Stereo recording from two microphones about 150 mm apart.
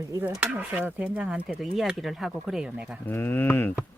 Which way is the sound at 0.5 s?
10° right (ahead or behind).